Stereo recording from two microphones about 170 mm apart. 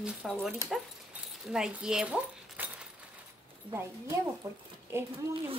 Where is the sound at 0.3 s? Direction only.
Centre (ahead or behind).